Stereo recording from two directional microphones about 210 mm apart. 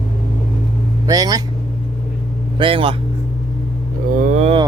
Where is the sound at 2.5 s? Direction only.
25° right (ahead or behind).